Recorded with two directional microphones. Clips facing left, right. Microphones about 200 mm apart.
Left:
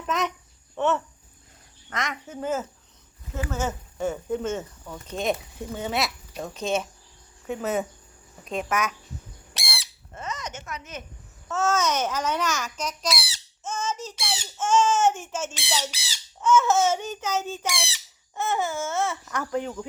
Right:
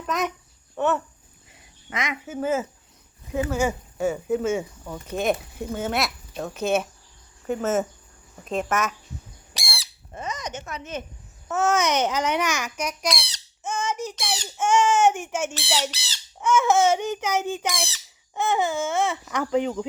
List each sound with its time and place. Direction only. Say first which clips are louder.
0.1 s speech: right 1 dB; centre (ahead or behind)
9.6 s squawk: right 1 dB; centre (ahead or behind)
10.2 s a sound: right 3 dB; 15° right (ahead or behind)
10.7 s speech: right 5 dB; 30° right (ahead or behind)
11.4 s speech: right 2 dB; 15° right (ahead or behind)
13.1 s speech: even; 5° left (ahead or behind)
13.6 s squawk: right 3 dB; 15° right (ahead or behind)
14.6 s speech: right 2 dB; 15° right (ahead or behind)
15.5 s speech: right 3 dB; 10° left (ahead or behind)
16.4 s speech: right 1 dB; 15° right (ahead or behind)
17.7 s speech: right 3 dB; 15° left (ahead or behind)
18.3 s speech: right 3 dB; 15° right (ahead or behind)